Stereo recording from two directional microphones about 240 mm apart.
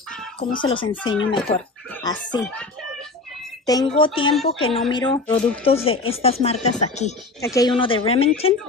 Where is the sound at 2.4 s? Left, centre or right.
Centre.